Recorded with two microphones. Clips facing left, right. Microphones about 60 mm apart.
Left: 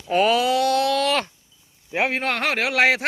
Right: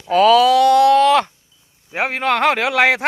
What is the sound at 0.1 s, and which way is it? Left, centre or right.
Speech, right.